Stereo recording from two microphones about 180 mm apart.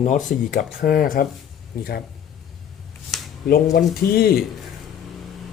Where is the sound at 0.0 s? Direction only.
40° left (ahead or behind).